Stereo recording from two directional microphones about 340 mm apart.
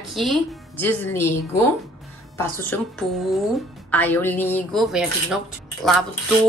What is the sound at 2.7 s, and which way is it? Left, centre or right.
Speech, centre.